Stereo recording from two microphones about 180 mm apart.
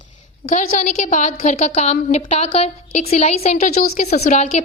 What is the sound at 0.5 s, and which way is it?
A woman's voice, 40° left (ahead or behind).